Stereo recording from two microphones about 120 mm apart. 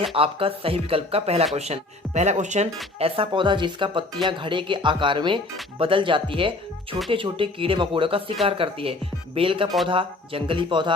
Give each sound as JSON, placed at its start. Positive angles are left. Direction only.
{"t": 0.0, "sound": "speech", "side_deg": -50}
{"t": 3.0, "sound": "speech", "side_deg": -45}